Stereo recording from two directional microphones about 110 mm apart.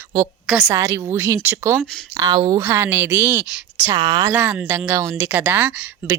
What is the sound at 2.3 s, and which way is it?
Speech, 40° right (ahead or behind).